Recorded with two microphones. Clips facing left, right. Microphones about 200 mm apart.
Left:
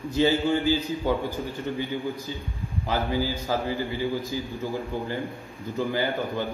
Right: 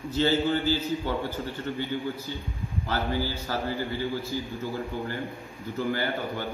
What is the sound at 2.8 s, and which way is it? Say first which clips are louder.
A man's voice: left 3 dB; 15° left (ahead or behind).